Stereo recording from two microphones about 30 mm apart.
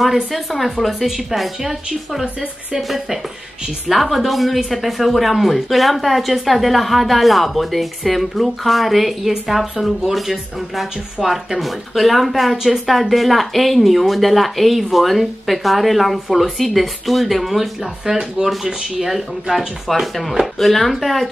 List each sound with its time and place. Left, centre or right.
0.0 s speech: centre
3.9 s speech: centre
18.0 s speech: centre
18.9 s speech: centre